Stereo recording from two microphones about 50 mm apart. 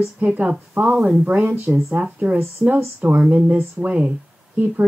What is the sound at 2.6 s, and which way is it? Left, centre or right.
Speech, centre.